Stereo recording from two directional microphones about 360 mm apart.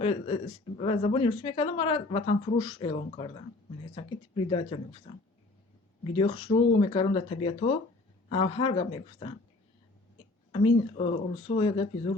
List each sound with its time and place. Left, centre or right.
0.0 s speech: centre
6.1 s speech: centre
10.5 s speech: centre